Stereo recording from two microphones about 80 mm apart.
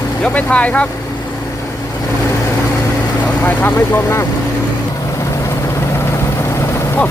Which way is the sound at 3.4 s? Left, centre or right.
Left.